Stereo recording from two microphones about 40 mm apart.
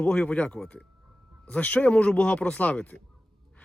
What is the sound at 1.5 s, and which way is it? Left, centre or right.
Speech, left.